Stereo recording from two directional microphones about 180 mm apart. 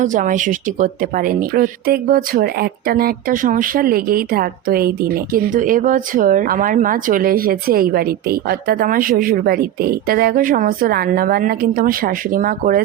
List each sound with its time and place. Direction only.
0.0 s speech: 45° right (ahead or behind)